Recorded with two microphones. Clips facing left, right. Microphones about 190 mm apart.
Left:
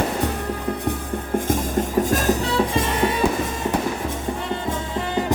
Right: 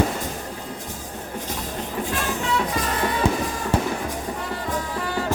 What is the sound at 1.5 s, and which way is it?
Music, 45° left (ahead or behind).